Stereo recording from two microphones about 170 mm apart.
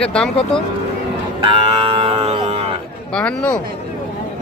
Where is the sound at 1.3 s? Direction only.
30° right (ahead or behind).